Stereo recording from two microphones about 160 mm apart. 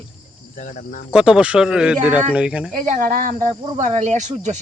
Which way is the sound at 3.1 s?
50° right (ahead or behind).